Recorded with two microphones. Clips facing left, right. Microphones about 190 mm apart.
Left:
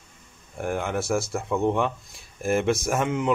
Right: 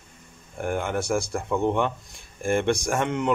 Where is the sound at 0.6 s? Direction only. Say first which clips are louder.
Even; centre (ahead or behind).